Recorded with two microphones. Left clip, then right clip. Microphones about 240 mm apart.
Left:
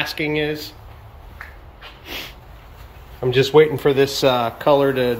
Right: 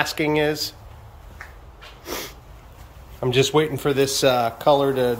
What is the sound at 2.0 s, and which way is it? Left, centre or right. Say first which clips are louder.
Sneeze: even; right.